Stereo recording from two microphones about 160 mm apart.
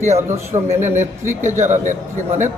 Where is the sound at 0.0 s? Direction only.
15° right (ahead or behind).